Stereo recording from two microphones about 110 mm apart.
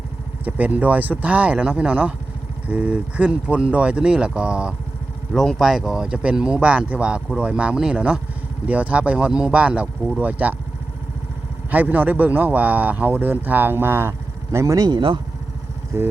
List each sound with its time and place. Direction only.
0.4 s speech: 15° right (ahead or behind)
5.3 s speech: centre (ahead or behind); by 10.5 s 15° right (ahead or behind)
11.7 s speech: 15° right (ahead or behind)
14.8 s speech: 45° right (ahead or behind)
15.9 s a sound: 25° right (ahead or behind)